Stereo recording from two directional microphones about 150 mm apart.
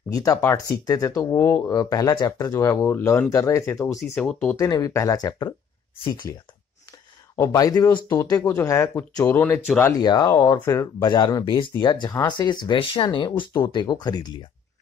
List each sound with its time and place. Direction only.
0.1 s speech: 25° left (ahead or behind)
4.2 s speech: 5° left (ahead or behind)
4.6 s speech: 25° left (ahead or behind)
7.3 s speech: 20° left (ahead or behind)
9.9 s speech: 25° left (ahead or behind)